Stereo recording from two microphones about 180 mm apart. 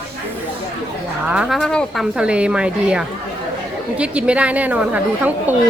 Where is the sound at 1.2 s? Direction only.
5° right (ahead or behind).